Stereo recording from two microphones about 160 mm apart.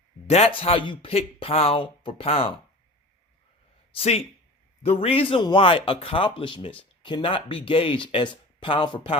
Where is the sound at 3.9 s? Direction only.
40° left (ahead or behind).